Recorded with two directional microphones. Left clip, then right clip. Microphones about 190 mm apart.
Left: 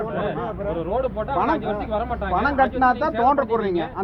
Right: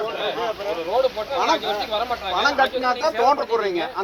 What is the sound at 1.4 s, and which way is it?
Speech, centre (ahead or behind).